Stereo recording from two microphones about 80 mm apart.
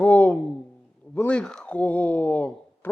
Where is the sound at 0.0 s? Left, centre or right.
Centre.